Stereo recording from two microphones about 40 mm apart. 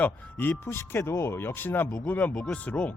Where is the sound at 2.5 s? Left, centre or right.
Left.